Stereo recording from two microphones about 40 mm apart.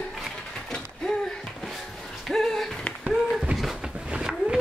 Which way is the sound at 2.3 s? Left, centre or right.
Centre.